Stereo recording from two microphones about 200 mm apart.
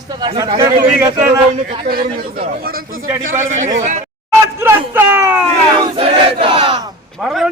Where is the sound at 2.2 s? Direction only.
50° right (ahead or behind).